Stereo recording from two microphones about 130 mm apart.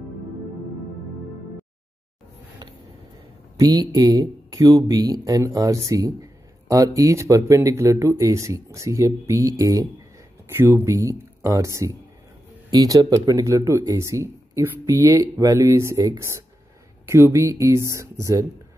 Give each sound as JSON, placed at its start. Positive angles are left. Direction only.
{"t": 3.5, "sound": "speech", "side_deg": -30}